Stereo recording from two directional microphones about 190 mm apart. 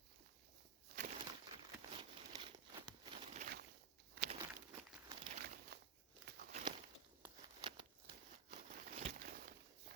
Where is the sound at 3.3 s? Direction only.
40° right (ahead or behind).